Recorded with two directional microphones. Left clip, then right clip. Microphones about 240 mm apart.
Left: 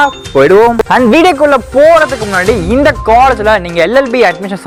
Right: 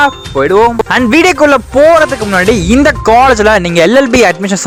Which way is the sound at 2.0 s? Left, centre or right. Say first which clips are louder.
Right 1 dB; right.